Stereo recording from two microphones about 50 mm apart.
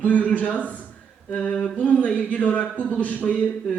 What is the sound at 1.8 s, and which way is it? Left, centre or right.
A man's voice, left.